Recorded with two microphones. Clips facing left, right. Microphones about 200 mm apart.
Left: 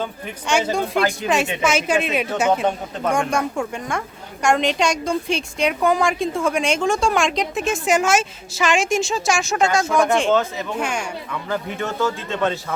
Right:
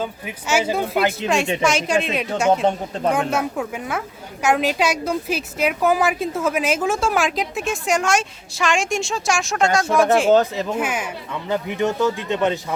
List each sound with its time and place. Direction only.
0.0 s a woman's voice: 5° right (ahead or behind)
1.6 s a woman's voice: 5° left (ahead or behind)
11.3 s speech: 20° right (ahead or behind)